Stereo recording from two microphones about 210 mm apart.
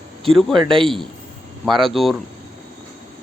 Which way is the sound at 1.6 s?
Centre (ahead or behind).